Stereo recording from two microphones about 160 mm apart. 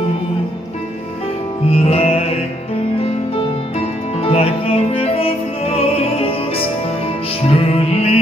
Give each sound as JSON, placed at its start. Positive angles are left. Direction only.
{"t": 1.7, "sound": "music", "side_deg": 40}
{"t": 4.2, "sound": "music", "side_deg": 35}